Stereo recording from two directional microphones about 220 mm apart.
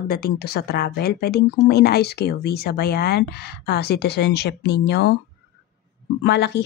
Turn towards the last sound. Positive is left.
turn(degrees=50)  # may be behind; listen again after turning